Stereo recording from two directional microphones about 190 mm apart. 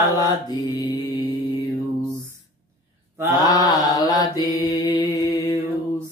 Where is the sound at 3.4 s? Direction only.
20° left (ahead or behind).